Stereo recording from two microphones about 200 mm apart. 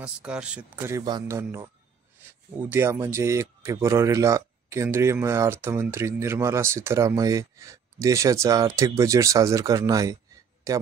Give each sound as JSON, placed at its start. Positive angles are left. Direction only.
{"t": 0.0, "sound": "speech", "side_deg": -5}